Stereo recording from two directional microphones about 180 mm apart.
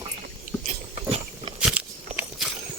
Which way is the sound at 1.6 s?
5° right (ahead or behind).